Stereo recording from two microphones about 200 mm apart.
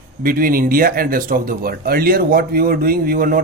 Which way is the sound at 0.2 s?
45° right (ahead or behind).